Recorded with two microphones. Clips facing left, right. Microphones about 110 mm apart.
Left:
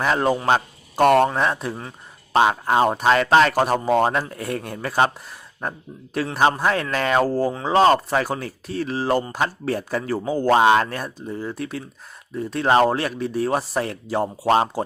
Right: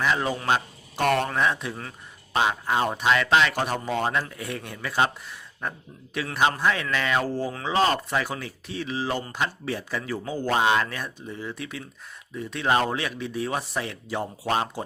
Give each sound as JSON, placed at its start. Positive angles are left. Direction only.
{"t": 0.0, "sound": "speech", "side_deg": 45}